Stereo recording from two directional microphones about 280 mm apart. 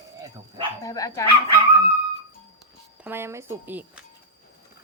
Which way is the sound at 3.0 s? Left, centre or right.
Centre.